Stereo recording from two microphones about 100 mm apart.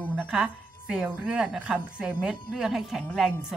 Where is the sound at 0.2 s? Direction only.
10° right (ahead or behind).